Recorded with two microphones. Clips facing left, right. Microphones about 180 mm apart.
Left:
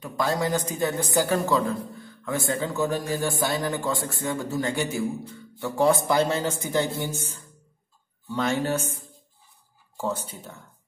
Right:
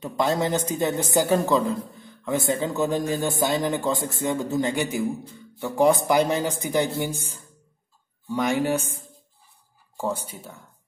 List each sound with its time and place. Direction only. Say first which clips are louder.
0.0 s speech: right 2 dB; 20° right (ahead or behind)